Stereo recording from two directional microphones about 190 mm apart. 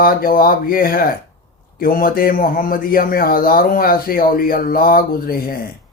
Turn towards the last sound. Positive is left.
turn(degrees=50)  # may be behind; listen again after turning